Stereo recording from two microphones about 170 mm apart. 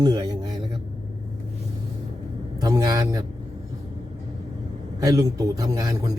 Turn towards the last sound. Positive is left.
turn(degrees=-20)  # may be behind; listen again after turning